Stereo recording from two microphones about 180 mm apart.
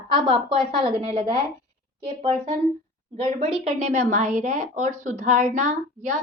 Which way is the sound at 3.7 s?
40° right (ahead or behind).